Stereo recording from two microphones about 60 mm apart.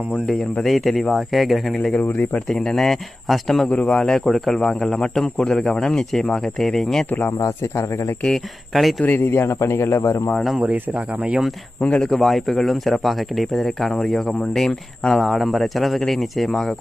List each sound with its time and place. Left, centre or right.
0.1 s speech: centre
2.0 s speech: left
2.5 s speech: centre
3.7 s speech: centre
7.1 s speech: left
7.4 s speech: left
8.2 s speech: centre
9.0 s speech: left
10.6 s speech: right
11.8 s speech: centre
12.0 s speech: centre